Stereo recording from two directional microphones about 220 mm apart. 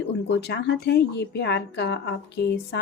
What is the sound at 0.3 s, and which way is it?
Speech, 50° left (ahead or behind).